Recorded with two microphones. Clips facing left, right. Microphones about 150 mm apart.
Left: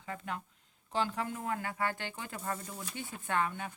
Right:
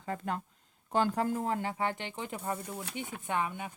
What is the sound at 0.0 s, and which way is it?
A woman's voice, 40° right (ahead or behind).